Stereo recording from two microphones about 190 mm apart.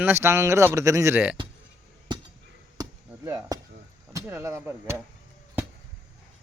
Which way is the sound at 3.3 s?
20° right (ahead or behind).